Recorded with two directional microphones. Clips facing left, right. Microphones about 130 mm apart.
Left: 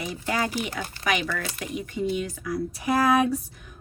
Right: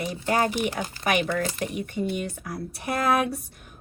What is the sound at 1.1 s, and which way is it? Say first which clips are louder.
Speech: right 3 dB; 55° right (ahead or behind).